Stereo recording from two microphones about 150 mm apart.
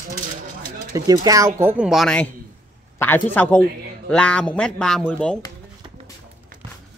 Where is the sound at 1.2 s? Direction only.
25° right (ahead or behind).